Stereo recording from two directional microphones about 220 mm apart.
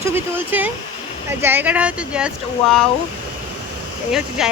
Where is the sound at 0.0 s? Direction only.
10° right (ahead or behind).